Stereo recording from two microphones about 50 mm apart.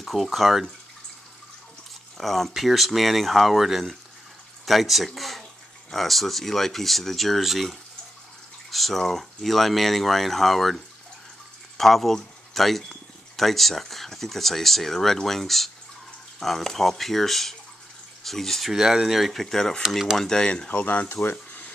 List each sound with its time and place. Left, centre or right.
0.0 s speech: centre
2.1 s speech: centre
18.7 s speech: centre
20.7 s speech: left
21.1 s speech: left